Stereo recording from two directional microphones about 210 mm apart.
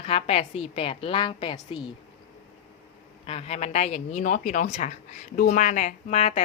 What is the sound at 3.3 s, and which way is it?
A woman's voice, 30° left (ahead or behind).